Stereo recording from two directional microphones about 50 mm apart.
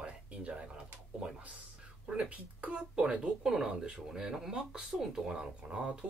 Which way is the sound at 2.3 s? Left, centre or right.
Right.